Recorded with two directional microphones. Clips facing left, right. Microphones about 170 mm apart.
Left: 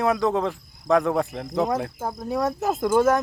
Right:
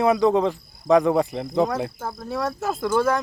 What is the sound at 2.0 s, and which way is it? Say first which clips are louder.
Cricket: left 2 dB; 15° left (ahead or behind).